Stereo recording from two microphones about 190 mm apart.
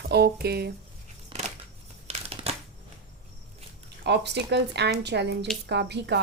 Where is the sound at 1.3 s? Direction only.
25° right (ahead or behind).